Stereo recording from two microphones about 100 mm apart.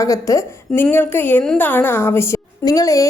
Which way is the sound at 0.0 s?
35° left (ahead or behind).